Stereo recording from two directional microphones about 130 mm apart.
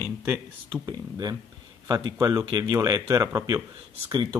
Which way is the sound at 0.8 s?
30° right (ahead or behind).